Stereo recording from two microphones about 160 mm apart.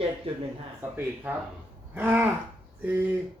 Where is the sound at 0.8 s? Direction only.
15° right (ahead or behind).